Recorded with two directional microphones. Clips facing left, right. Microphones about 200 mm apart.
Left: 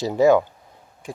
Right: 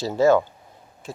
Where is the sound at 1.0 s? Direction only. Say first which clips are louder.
Left 2 dB; 15° left (ahead or behind).